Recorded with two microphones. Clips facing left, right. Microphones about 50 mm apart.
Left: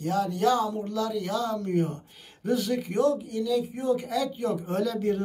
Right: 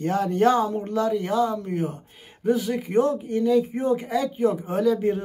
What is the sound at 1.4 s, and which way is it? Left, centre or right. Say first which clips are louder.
Speech: right 3 dB; centre.